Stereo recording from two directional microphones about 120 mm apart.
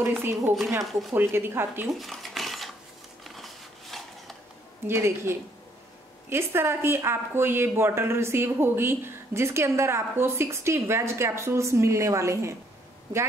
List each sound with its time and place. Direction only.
0.0 s a woman's voice: 20° right (ahead or behind)
1.9 s a sound: centre (ahead or behind)
4.8 s speech: 20° right (ahead or behind)